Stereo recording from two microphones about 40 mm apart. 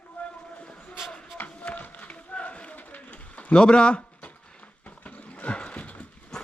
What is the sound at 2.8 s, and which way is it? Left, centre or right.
Pigeon, left.